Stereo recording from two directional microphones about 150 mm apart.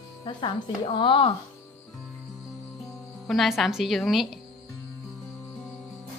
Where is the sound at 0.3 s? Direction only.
30° left (ahead or behind).